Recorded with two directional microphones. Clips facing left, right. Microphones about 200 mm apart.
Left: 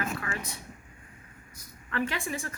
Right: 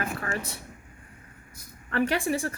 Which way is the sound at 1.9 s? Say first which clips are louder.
Right 6 dB; 40° right (ahead or behind).